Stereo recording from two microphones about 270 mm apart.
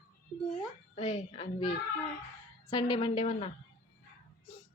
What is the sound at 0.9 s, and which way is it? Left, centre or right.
A child's voice, left.